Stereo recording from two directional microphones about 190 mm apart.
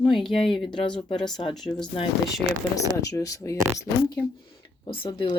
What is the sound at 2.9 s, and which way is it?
Speech, 15° left (ahead or behind).